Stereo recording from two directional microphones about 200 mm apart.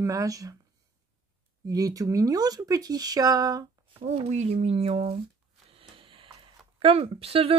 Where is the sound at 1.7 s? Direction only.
20° right (ahead or behind).